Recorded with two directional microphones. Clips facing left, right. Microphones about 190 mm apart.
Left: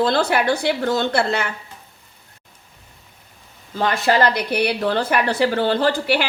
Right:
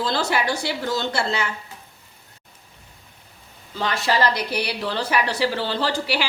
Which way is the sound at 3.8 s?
55° left (ahead or behind).